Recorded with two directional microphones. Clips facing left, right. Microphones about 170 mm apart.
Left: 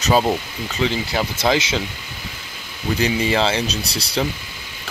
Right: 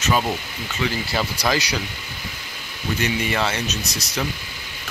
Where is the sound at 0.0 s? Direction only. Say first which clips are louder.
Left 4 dB; 30° left (ahead or behind).